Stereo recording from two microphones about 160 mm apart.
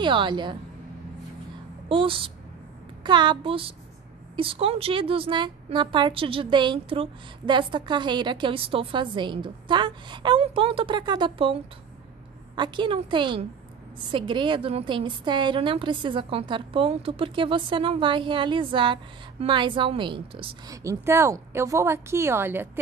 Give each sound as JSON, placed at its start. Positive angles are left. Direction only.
{"t": 0.0, "sound": "a woman's voice", "side_deg": -30}
{"t": 1.9, "sound": "a woman's voice", "side_deg": -35}